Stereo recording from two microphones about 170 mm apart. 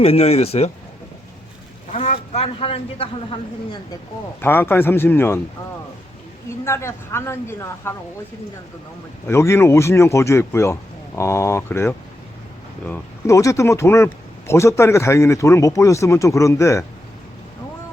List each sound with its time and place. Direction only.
0.0 s speech: 35° left (ahead or behind)
1.9 s speech: 40° left (ahead or behind)
4.4 s speech: 10° left (ahead or behind)
6.7 s speech: 15° left (ahead or behind)
9.2 s speech: 15° left (ahead or behind)